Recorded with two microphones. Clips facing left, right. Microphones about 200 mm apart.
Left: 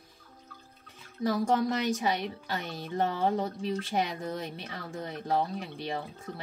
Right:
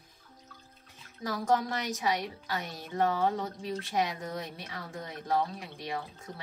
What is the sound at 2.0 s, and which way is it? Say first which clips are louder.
Speech: left 1 dB; 25° left (ahead or behind).